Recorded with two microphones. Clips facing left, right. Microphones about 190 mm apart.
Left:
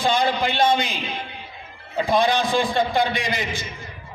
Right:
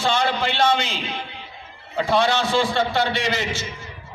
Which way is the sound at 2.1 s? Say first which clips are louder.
Even; 15° left (ahead or behind).